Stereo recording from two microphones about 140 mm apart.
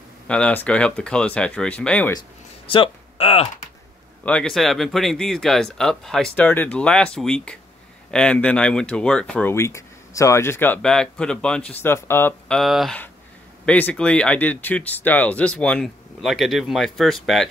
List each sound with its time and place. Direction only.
0.3 s speech: 10° left (ahead or behind)
2.1 s a sound: 35° left (ahead or behind)
4.2 s speech: 10° left (ahead or behind)
9.5 s speech: 20° left (ahead or behind)
12.5 s speech: centre (ahead or behind)
13.7 s speech: 10° left (ahead or behind)